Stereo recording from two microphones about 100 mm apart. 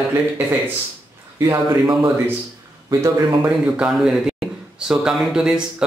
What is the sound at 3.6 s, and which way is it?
Speech, 5° right (ahead or behind).